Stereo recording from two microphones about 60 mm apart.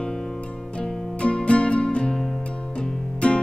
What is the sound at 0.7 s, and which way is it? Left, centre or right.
Music, centre.